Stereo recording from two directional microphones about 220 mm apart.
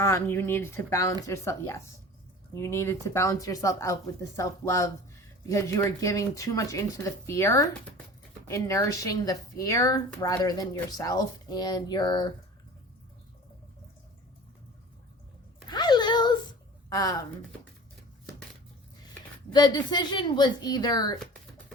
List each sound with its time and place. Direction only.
0.0 s a woman's voice: 10° left (ahead or behind)
15.6 s a sound: 20° left (ahead or behind)
19.5 s speech: 20° left (ahead or behind)